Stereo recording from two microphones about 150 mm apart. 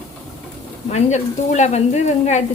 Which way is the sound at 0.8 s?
50° left (ahead or behind).